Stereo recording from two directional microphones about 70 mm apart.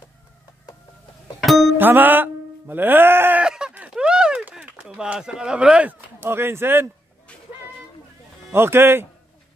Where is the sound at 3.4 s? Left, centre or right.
Centre.